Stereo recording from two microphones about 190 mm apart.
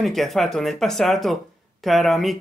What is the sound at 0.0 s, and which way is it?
Speech, centre (ahead or behind).